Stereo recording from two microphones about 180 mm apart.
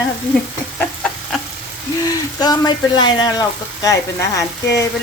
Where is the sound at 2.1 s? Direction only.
20° left (ahead or behind).